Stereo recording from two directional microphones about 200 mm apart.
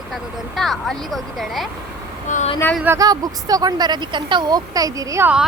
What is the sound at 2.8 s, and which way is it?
Speech, 15° right (ahead or behind).